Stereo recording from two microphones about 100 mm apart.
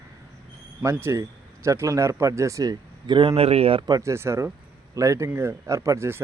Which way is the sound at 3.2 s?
90° right.